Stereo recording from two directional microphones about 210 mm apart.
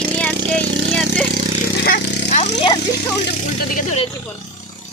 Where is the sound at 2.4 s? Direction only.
25° left (ahead or behind).